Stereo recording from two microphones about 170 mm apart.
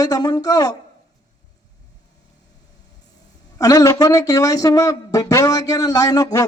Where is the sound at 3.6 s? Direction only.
20° left (ahead or behind).